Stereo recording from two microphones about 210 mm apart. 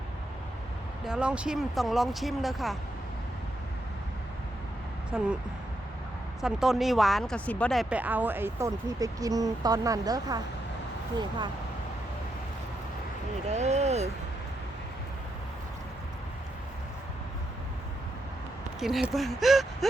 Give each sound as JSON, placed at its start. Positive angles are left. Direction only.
{"t": 1.0, "sound": "speech", "side_deg": -5}
{"t": 5.1, "sound": "speech", "side_deg": 0}
{"t": 6.4, "sound": "speech", "side_deg": 0}
{"t": 13.5, "sound": "speech", "side_deg": -30}
{"t": 18.8, "sound": "speech", "side_deg": 0}